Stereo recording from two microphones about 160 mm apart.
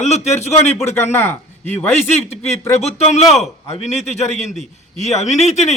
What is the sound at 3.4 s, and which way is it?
A man's voice, 45° left (ahead or behind).